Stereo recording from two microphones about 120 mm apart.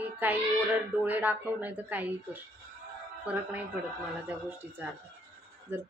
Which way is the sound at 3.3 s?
10° right (ahead or behind).